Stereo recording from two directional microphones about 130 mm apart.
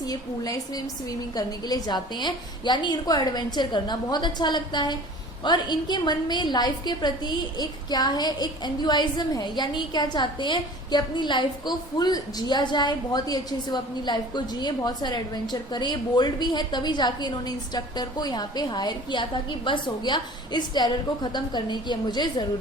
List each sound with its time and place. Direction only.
0.1 s a woman's voice: 30° left (ahead or behind)